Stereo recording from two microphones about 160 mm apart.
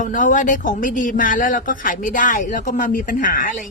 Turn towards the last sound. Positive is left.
turn(degrees=60)  # may be behind; listen again after turning